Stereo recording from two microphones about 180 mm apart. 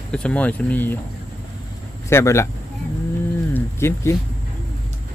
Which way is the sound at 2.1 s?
15° left (ahead or behind).